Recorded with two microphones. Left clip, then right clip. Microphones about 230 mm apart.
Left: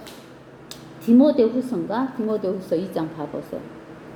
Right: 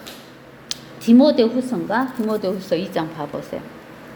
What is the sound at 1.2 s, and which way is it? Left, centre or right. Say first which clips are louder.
Speech: right 2 dB; right.